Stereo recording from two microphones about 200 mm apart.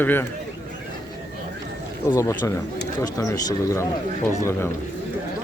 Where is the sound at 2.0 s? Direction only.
15° left (ahead or behind).